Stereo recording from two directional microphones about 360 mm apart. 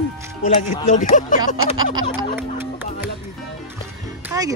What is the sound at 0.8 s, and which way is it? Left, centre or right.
Speech, left.